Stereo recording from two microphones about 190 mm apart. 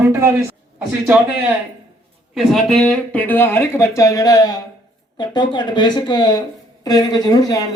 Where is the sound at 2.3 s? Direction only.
Centre (ahead or behind).